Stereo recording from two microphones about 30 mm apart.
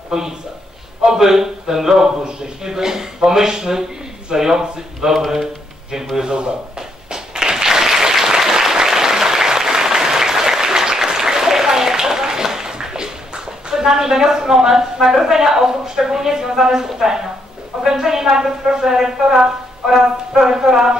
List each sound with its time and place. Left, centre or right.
0.1 s speech: centre
7.1 s applause: right
13.7 s speech: centre